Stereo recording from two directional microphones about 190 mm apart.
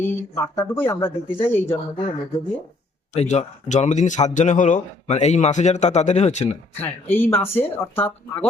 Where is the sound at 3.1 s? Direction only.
35° left (ahead or behind).